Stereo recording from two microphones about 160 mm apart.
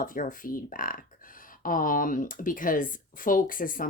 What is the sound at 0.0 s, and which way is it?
Speech, 55° left (ahead or behind).